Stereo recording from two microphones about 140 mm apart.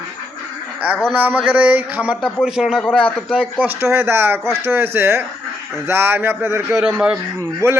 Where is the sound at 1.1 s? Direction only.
10° right (ahead or behind).